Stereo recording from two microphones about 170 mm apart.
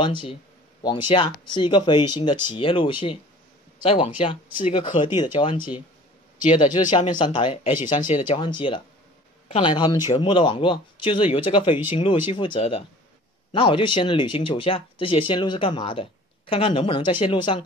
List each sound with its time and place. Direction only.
0.0 s speech: 30° left (ahead or behind)
6.9 s speech: 25° left (ahead or behind)
7.8 s speech: 50° left (ahead or behind)
8.2 s speech: 30° left (ahead or behind)